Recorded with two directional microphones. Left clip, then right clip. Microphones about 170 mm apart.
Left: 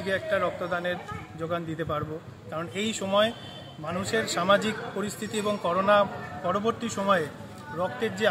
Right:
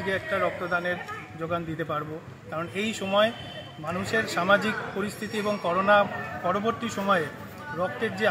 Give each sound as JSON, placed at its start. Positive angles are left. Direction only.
{"t": 0.1, "sound": "a man's voice", "side_deg": 0}
{"t": 5.8, "sound": "speech", "side_deg": 25}
{"t": 6.4, "sound": "a man's voice", "side_deg": 0}